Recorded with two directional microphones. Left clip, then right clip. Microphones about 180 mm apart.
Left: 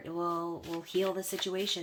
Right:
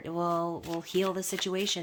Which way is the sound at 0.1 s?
45° right (ahead or behind).